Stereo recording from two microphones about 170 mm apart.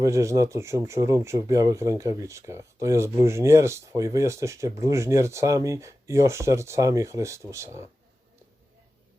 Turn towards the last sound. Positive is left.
turn(degrees=-15)  # may be behind; listen again after turning